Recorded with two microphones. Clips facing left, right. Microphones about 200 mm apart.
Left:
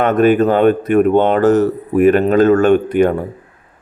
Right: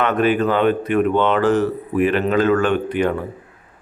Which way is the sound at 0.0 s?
45° left (ahead or behind).